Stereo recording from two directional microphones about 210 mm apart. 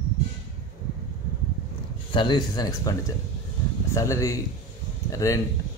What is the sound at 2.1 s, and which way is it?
Speech, 20° left (ahead or behind).